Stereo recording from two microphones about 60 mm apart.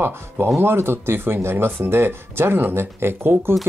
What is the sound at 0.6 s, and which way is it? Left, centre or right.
Speech, right.